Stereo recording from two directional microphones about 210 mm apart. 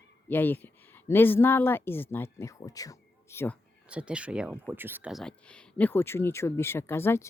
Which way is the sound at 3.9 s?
5° right (ahead or behind).